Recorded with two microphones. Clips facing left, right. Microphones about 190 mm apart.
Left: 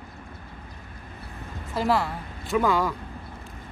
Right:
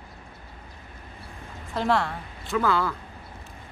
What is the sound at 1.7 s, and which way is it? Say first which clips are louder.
Speech: even; 5° left (ahead or behind).